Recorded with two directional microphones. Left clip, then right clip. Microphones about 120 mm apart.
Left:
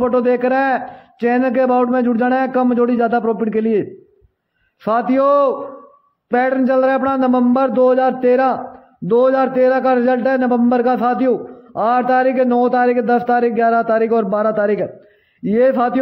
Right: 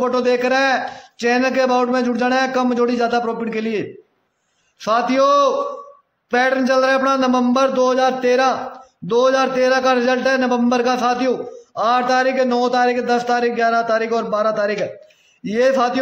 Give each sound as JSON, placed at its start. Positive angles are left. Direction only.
{"t": 0.0, "sound": "a man's voice", "side_deg": 35}
{"t": 4.8, "sound": "a man's voice", "side_deg": 35}